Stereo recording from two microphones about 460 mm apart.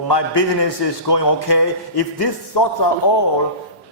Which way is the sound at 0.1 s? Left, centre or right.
Left.